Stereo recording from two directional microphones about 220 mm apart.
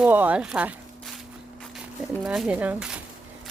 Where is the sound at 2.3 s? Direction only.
5° right (ahead or behind).